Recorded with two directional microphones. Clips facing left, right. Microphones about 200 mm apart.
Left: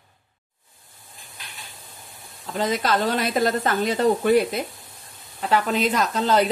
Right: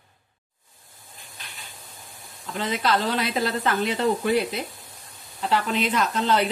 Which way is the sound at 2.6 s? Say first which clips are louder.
Left 2 dB; 45° left (ahead or behind).